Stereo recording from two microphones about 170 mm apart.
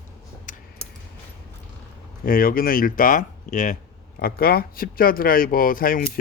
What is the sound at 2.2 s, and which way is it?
Speech, 55° left (ahead or behind).